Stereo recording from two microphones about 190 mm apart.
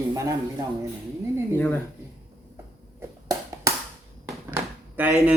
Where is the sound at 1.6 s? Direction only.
10° left (ahead or behind).